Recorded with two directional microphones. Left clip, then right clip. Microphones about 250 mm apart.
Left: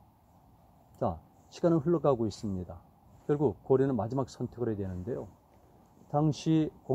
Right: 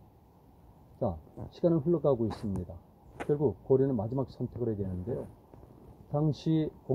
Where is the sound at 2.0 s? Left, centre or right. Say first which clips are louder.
Even; left.